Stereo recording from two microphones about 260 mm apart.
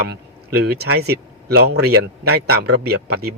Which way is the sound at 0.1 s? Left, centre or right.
Right.